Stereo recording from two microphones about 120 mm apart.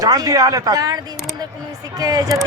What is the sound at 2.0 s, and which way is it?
Speech, 30° right (ahead or behind).